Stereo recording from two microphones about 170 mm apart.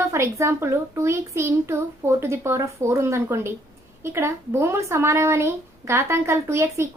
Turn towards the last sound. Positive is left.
turn(degrees=-15)  # may be behind; listen again after turning